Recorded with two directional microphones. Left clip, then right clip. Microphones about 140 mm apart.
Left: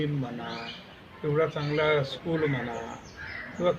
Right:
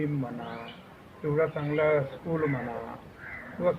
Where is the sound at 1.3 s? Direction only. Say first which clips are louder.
Even; 30° left (ahead or behind).